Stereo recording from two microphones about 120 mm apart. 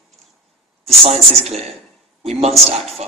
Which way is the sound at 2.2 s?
60° right (ahead or behind).